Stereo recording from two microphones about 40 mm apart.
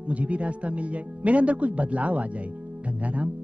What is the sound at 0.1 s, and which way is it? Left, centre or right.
Speech, right.